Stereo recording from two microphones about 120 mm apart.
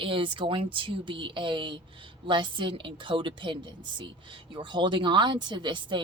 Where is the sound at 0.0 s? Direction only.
45° right (ahead or behind).